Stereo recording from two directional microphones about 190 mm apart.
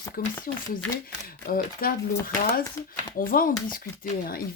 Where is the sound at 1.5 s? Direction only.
50° left (ahead or behind).